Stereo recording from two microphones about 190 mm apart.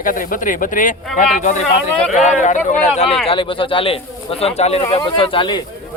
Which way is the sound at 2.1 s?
40° left (ahead or behind).